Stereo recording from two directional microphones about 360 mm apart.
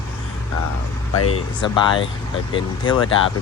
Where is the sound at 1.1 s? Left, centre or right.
Left.